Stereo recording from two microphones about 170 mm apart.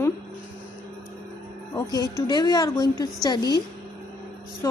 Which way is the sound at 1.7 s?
20° left (ahead or behind).